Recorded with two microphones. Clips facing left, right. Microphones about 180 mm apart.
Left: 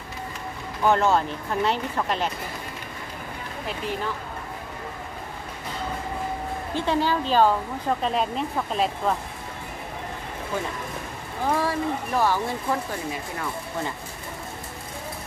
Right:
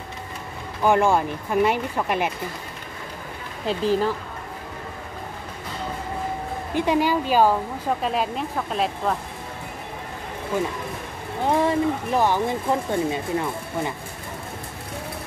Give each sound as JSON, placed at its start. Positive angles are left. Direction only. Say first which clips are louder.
{"t": 0.8, "sound": "speech", "louder": "right 2 dB", "side_deg": -10}
{"t": 3.6, "sound": "speech", "louder": "right 9 dB", "side_deg": -35}
{"t": 6.7, "sound": "speech", "louder": "right 3 dB", "side_deg": -15}
{"t": 11.4, "sound": "speech", "louder": "right 4 dB", "side_deg": -20}